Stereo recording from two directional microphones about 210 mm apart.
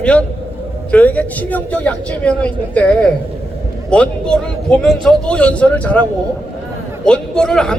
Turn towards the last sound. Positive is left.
turn(degrees=5)  # may be behind; listen again after turning